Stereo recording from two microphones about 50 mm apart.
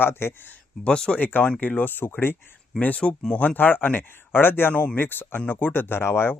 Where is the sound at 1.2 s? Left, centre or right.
Left.